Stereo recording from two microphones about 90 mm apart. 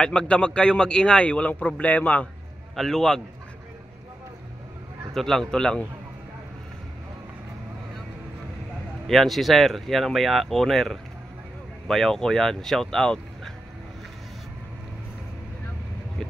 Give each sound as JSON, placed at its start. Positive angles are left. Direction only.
{"t": 0.0, "sound": "a man's voice", "side_deg": 10}
{"t": 2.7, "sound": "speech", "side_deg": 5}
{"t": 5.1, "sound": "a man's voice", "side_deg": 5}
{"t": 9.0, "sound": "speech", "side_deg": 0}